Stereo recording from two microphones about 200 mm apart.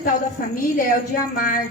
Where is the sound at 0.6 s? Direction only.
45° left (ahead or behind).